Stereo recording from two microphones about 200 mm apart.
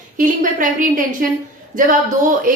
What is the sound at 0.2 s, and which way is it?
Speech, 45° right (ahead or behind).